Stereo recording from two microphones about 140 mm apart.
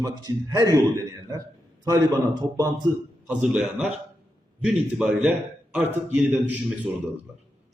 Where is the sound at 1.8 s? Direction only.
25° right (ahead or behind).